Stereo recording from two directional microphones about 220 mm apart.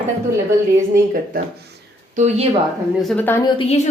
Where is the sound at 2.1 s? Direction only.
30° right (ahead or behind).